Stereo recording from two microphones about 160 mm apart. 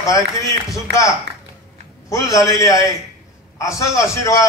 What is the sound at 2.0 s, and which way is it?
A man's voice, 20° left (ahead or behind).